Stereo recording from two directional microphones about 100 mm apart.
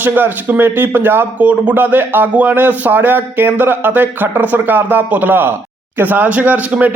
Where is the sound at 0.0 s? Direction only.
20° right (ahead or behind).